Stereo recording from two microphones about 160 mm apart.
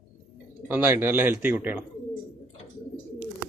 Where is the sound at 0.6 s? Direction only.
15° right (ahead or behind).